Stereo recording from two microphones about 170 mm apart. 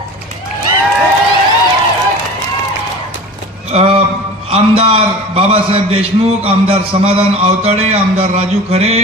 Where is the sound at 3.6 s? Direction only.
35° right (ahead or behind).